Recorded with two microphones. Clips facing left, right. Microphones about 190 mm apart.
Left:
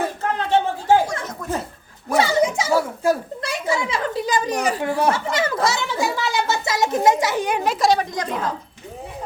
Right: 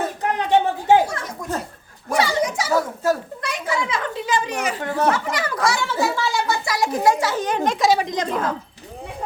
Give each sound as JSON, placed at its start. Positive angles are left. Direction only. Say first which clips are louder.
{"t": 0.2, "sound": "a sound", "louder": "right 3 dB", "side_deg": -15}
{"t": 1.4, "sound": "chuckle", "louder": "left 1 dB", "side_deg": -15}
{"t": 2.2, "sound": "a sound", "louder": "left 3 dB", "side_deg": 25}
{"t": 2.7, "sound": "a child's voice", "louder": "right 1 dB", "side_deg": 10}
{"t": 3.4, "sound": "a child's voice", "louder": "left 2 dB", "side_deg": 25}
{"t": 4.1, "sound": "a woman's voice", "louder": "left 2 dB", "side_deg": 40}
{"t": 4.8, "sound": "a child's voice", "louder": "right 2 dB", "side_deg": 10}
{"t": 5.1, "sound": "a child's voice", "louder": "left 2 dB", "side_deg": 25}
{"t": 7.9, "sound": "a woman's voice", "louder": "right 1 dB", "side_deg": -20}